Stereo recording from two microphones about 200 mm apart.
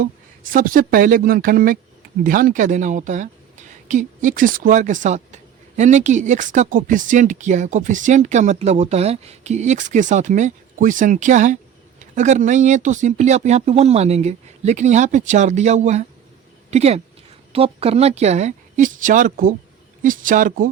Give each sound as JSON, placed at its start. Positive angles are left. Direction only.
{"t": 0.0, "sound": "speech", "side_deg": -45}